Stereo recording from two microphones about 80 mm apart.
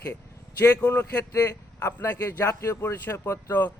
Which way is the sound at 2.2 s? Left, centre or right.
Left.